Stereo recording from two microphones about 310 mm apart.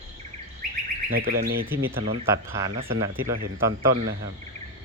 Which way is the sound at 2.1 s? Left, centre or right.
Centre.